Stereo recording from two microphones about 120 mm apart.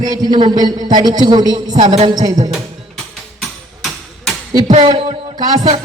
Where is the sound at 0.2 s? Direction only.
40° right (ahead or behind).